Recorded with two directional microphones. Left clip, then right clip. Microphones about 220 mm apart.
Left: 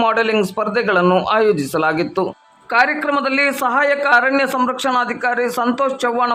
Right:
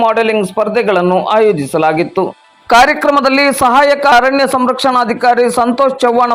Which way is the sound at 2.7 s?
25° right (ahead or behind).